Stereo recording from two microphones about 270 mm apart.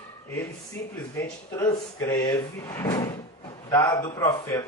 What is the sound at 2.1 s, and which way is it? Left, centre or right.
A man's voice, centre.